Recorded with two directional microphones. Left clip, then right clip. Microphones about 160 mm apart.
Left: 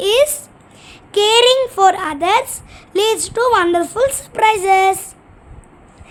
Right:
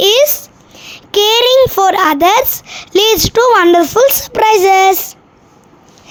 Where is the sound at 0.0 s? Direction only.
35° right (ahead or behind).